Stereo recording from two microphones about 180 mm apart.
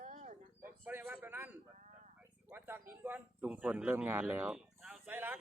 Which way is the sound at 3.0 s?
10° right (ahead or behind).